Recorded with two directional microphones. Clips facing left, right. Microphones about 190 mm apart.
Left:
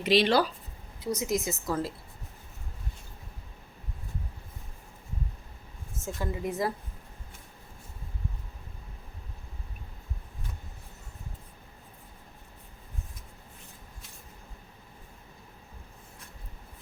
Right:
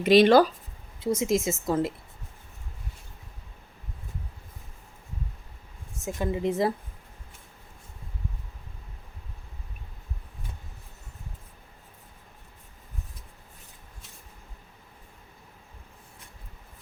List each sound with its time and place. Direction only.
0.0 s speech: 50° right (ahead or behind)
0.9 s a woman's voice: 25° right (ahead or behind)
6.0 s a woman's voice: 15° right (ahead or behind)